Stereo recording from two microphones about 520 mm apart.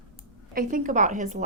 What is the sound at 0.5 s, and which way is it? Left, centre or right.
Speech, centre.